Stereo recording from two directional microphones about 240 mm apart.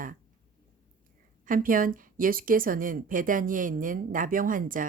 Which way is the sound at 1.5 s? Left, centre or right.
Right.